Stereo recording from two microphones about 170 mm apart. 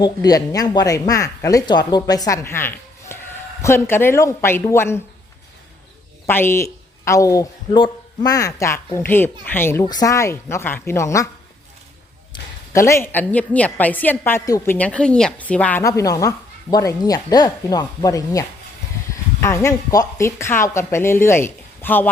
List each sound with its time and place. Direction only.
0.0 s a woman's voice: 20° left (ahead or behind)
6.2 s a woman's voice: 15° left (ahead or behind)
12.3 s a woman's voice: 15° left (ahead or behind)
15.8 s a woman's voice: 20° left (ahead or behind)